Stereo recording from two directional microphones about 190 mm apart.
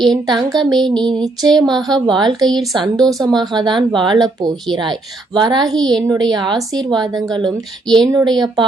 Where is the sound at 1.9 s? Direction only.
25° right (ahead or behind).